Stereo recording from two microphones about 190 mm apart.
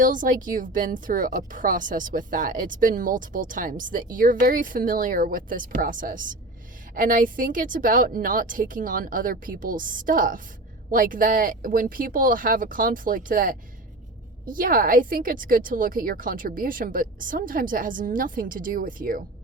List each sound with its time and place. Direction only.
0.0 s a woman's voice: 45° right (ahead or behind)